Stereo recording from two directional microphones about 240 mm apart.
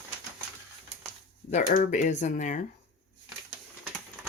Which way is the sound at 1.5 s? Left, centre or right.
Left.